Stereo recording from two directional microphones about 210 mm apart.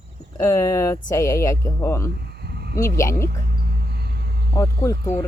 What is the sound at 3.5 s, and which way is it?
Vehicle, 50° right (ahead or behind).